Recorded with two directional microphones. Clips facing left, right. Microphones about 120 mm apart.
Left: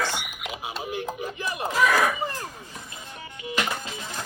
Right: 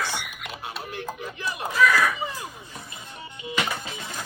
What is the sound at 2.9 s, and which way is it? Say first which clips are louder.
Music: even; 25° right (ahead or behind).